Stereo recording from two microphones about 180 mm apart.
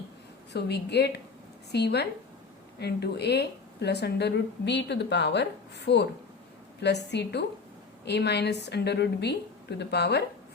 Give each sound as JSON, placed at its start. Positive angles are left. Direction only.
{"t": 0.5, "sound": "speech", "side_deg": 70}